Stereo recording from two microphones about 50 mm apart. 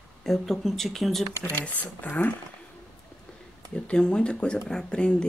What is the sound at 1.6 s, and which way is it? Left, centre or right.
Speech, left.